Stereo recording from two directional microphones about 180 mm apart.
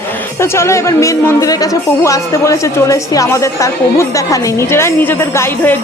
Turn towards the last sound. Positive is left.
turn(degrees=15)  # may be behind; listen again after turning